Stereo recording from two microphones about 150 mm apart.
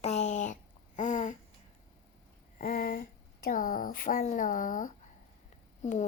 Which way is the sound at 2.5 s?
70° left (ahead or behind).